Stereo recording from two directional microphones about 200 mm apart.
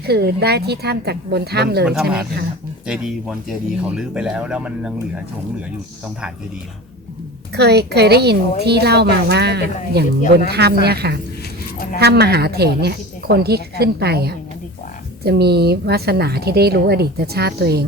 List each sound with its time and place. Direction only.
0.0 s a woman's voice: 55° right (ahead or behind)
2.8 s speech: 5° right (ahead or behind)
7.5 s a woman's voice: 55° right (ahead or behind)